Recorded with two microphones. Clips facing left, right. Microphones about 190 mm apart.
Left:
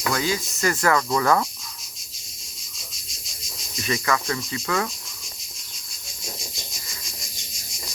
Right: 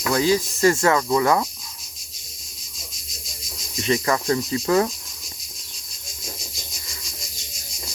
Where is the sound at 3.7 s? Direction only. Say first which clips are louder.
Right 3 dB; 30° right (ahead or behind).